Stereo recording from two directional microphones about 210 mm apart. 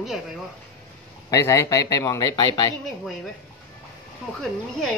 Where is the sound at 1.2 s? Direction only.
15° left (ahead or behind).